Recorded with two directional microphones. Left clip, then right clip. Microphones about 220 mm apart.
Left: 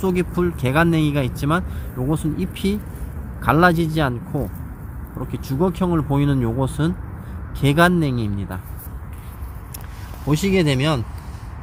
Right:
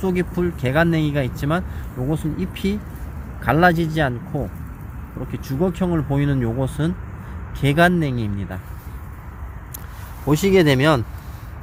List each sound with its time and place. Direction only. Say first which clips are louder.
0.0 s speech: left 1 dB; centre (ahead or behind)
10.2 s speech: right 4 dB; 20° right (ahead or behind)